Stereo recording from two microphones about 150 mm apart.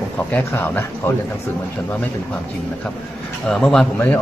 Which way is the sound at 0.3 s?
15° left (ahead or behind).